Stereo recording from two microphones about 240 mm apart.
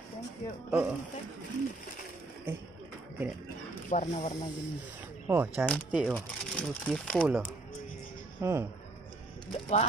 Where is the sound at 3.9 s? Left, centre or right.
Left.